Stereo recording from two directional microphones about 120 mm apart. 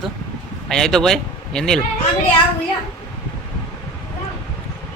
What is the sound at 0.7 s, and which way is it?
Speech, 5° left (ahead or behind).